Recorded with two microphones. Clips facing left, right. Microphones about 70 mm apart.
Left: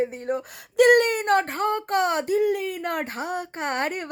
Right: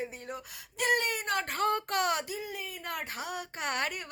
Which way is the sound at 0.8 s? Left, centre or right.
Left.